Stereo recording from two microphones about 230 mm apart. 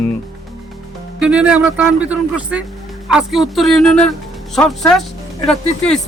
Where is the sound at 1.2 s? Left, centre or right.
Centre.